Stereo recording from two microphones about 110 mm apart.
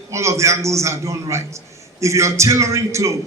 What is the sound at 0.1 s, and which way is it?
Speech, 25° right (ahead or behind).